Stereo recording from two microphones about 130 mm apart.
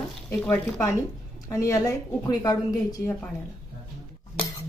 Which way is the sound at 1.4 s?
25° left (ahead or behind).